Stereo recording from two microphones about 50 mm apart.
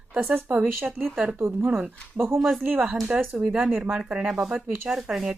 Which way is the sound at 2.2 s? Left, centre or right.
Right.